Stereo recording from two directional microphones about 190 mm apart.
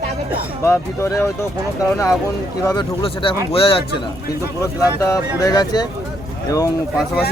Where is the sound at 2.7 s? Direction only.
25° left (ahead or behind).